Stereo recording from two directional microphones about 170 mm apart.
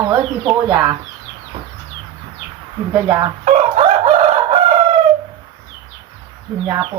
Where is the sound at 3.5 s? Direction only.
40° right (ahead or behind).